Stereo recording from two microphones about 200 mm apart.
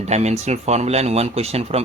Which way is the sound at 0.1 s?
35° right (ahead or behind).